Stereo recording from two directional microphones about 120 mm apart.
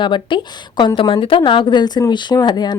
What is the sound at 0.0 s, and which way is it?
Speech, 40° left (ahead or behind).